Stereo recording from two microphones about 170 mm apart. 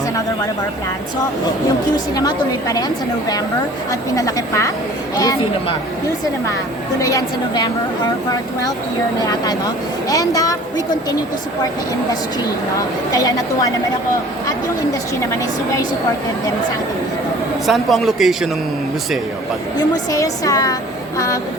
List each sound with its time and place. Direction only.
2.1 s speech: 20° left (ahead or behind)
7.0 s speech: 20° left (ahead or behind)
9.2 s speech: 20° left (ahead or behind)
13.1 s speech: 20° left (ahead or behind)
17.7 s a man's voice: centre (ahead or behind)
20.1 s speech: 20° left (ahead or behind)